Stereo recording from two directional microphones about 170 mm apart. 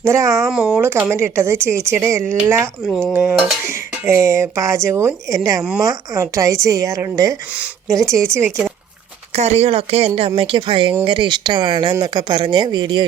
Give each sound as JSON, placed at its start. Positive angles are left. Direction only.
{"t": 0.0, "sound": "speech", "side_deg": -20}
{"t": 0.4, "sound": "dishes", "side_deg": -5}
{"t": 2.8, "sound": "speech", "side_deg": 0}
{"t": 3.1, "sound": "dishes", "side_deg": -10}
{"t": 5.8, "sound": "speech", "side_deg": -20}
{"t": 7.9, "sound": "dishes", "side_deg": -20}
{"t": 9.3, "sound": "speech", "side_deg": -40}